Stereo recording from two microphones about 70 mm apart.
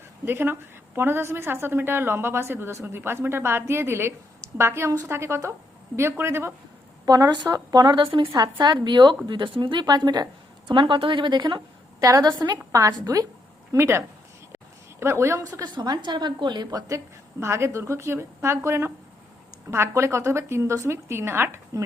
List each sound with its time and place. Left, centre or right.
0.3 s a woman's voice: right
7.0 s speech: right
11.9 s a woman's voice: right
12.2 s a woman's voice: right
12.7 s a woman's voice: right
13.7 s a woman's voice: right
14.5 s a sound: right
15.6 s speech: right
17.4 s a woman's voice: right